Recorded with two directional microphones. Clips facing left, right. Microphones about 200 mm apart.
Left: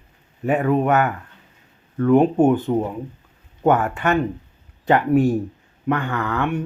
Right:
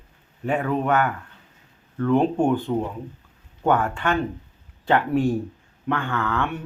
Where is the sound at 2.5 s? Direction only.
20° left (ahead or behind).